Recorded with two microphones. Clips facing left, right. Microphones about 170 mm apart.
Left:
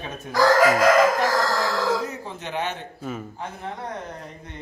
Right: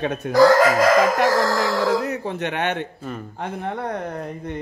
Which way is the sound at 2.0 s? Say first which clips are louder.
Right 7 dB; 65° right (ahead or behind).